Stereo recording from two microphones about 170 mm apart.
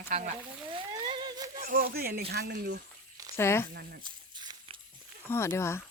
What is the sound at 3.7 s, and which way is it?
Speech, 70° right (ahead or behind).